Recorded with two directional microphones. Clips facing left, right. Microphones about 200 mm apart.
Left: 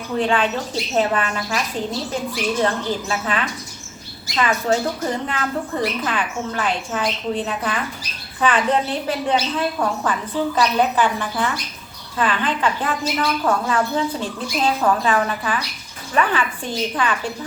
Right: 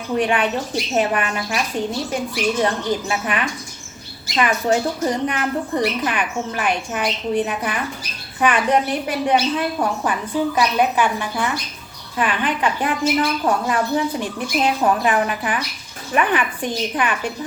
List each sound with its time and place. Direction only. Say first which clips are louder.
0.2 s speech: left 1 dB; 15° right (ahead or behind)